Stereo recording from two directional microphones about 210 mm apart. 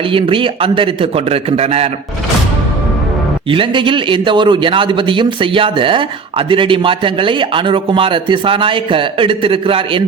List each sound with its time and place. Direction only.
0.1 s a man's voice: 25° right (ahead or behind)
3.5 s a man's voice: 25° right (ahead or behind)